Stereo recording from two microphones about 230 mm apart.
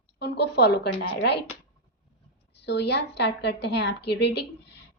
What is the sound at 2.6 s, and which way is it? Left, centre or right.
A woman's voice, left.